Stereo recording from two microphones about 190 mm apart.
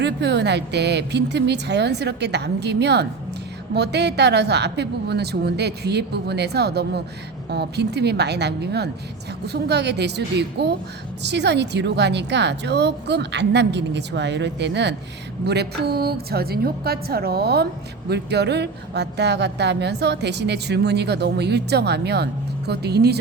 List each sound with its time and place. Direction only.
0.0 s a woman's voice: 65° right (ahead or behind)